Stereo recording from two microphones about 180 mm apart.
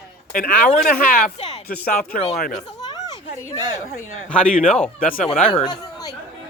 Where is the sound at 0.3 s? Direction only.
55° left (ahead or behind).